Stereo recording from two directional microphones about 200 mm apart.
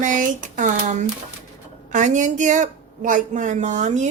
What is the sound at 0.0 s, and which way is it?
Speech, 40° right (ahead or behind).